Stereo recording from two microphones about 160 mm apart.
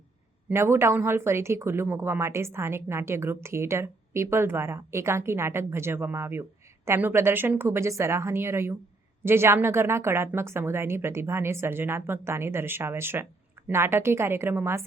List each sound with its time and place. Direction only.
0.5 s speech: 15° right (ahead or behind)